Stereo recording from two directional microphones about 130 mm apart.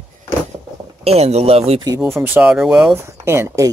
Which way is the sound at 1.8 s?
25° right (ahead or behind).